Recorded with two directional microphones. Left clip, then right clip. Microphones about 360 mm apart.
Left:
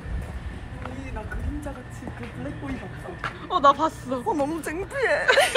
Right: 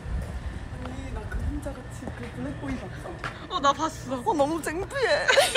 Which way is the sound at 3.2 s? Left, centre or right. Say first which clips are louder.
Left 6 dB; centre.